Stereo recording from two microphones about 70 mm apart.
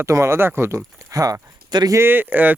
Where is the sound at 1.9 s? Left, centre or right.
Right.